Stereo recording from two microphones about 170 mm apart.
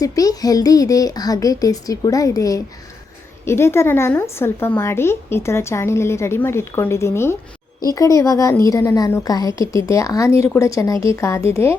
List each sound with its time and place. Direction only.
0.0 s a woman's voice: 20° left (ahead or behind)